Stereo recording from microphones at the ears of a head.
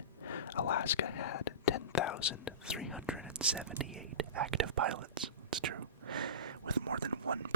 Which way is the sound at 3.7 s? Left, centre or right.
Right.